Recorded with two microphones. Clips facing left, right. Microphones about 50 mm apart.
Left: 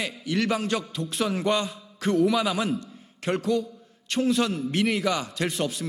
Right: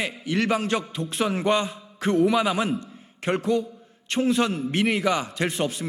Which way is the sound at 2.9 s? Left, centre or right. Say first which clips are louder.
Right 1 dB; centre.